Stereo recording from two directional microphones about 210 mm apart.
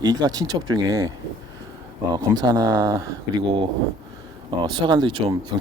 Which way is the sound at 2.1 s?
20° right (ahead or behind).